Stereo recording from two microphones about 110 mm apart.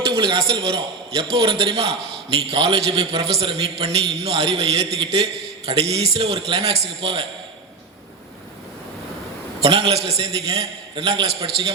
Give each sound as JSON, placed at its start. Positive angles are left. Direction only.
{"t": 0.2, "sound": "a man's voice", "side_deg": -55}
{"t": 9.6, "sound": "a man's voice", "side_deg": -60}